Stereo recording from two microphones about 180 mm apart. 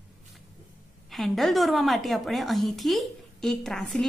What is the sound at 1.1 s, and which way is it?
A woman's voice, centre (ahead or behind).